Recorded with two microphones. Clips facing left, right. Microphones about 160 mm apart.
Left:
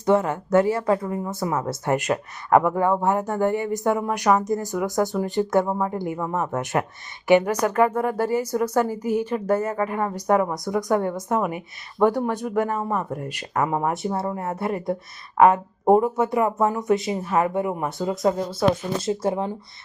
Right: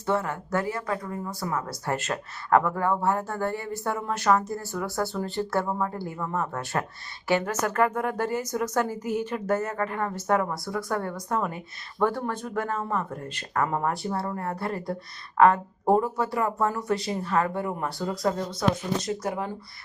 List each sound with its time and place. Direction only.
0.0 s speech: 20° left (ahead or behind)